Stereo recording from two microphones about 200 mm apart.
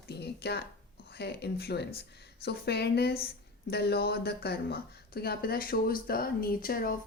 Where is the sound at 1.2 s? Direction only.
55° left (ahead or behind).